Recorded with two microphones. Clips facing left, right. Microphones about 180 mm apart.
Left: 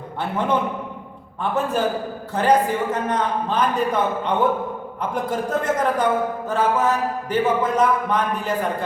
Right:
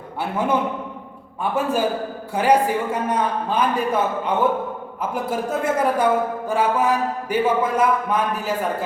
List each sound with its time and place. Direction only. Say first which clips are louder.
0.2 s a man's voice: right 1 dB; 10° right (ahead or behind)